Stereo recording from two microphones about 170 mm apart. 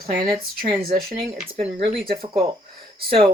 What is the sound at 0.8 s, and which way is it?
Speech, 60° right (ahead or behind).